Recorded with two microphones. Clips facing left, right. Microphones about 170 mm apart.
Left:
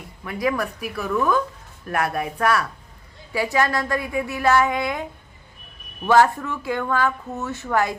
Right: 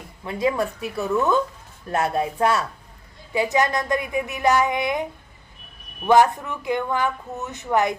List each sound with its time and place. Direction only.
0.3 s speech: 25° right (ahead or behind)
6.1 s speech: 15° right (ahead or behind)